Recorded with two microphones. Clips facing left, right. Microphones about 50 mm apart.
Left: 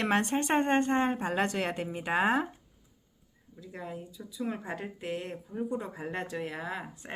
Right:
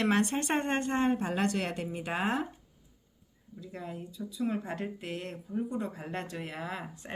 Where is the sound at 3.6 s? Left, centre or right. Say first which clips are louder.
Even; centre.